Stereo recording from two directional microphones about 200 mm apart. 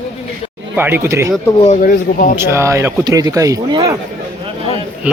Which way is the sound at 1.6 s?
40° left (ahead or behind).